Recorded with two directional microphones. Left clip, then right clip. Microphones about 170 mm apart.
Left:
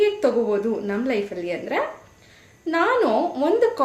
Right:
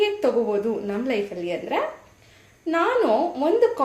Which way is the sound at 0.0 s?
15° left (ahead or behind).